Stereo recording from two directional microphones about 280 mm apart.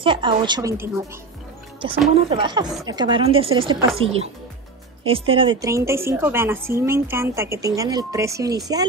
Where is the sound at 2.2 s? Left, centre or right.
Centre.